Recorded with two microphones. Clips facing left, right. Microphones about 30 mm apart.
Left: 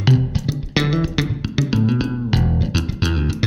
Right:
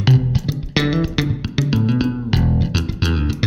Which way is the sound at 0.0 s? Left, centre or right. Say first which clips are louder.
Right 1 dB; centre.